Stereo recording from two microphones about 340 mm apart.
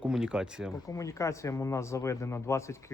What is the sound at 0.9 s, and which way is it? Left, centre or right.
Speech, centre.